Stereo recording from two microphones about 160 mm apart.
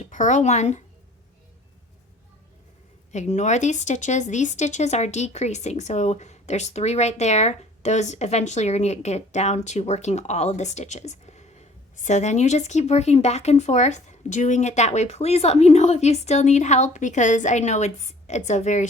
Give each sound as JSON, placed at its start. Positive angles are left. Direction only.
{"t": 0.1, "sound": "speech", "side_deg": 50}
{"t": 3.1, "sound": "speech", "side_deg": 45}